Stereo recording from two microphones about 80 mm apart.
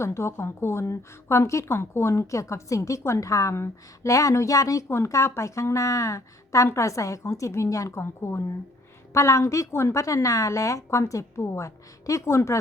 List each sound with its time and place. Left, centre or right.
0.0 s a woman's voice: left
8.0 s a woman's voice: left